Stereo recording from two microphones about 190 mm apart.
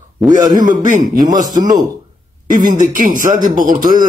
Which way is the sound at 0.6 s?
40° right (ahead or behind).